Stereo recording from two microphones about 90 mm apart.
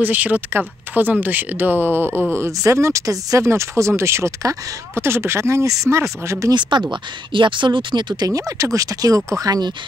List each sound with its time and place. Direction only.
0.0 s speech: 20° right (ahead or behind); by 6.0 s 35° right (ahead or behind)
6.5 s speech: 60° right (ahead or behind)
8.3 s speech: 40° right (ahead or behind)